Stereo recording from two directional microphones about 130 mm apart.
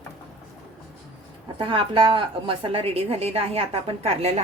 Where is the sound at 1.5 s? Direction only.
40° right (ahead or behind).